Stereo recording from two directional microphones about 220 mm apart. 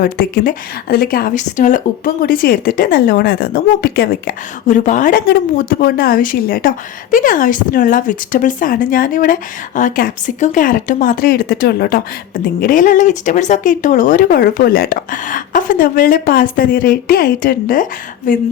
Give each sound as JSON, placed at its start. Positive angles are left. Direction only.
{"t": 0.0, "sound": "speech", "side_deg": 40}